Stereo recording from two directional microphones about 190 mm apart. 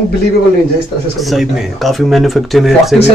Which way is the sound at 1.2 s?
Centre (ahead or behind).